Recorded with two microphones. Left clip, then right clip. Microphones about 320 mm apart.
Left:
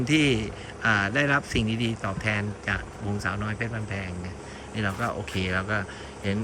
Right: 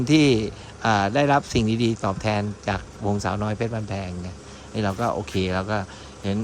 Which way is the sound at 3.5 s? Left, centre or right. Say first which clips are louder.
Right 4 dB; right.